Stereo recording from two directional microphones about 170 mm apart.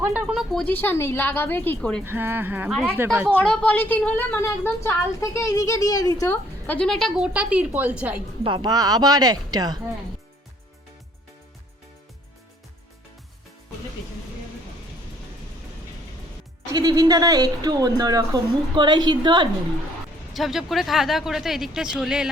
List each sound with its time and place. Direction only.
0.0 s a woman's voice: 5° right (ahead or behind)
2.0 s speech: 10° right (ahead or behind)
3.3 s a woman's voice: 5° left (ahead or behind)
8.4 s speech: 25° right (ahead or behind)
16.7 s speech: 25° right (ahead or behind)
20.3 s speech: centre (ahead or behind)